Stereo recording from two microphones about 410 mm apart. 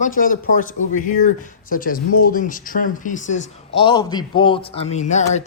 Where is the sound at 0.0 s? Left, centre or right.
Centre.